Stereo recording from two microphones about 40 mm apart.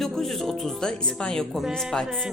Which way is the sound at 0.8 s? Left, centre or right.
Centre.